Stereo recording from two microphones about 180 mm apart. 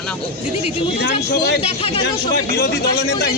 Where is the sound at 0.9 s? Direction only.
65° left (ahead or behind).